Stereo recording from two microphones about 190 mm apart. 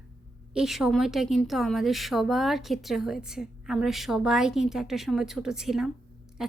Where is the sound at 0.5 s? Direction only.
5° right (ahead or behind).